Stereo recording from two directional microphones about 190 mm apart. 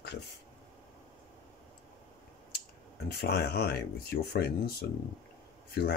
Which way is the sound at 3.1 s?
60° left (ahead or behind).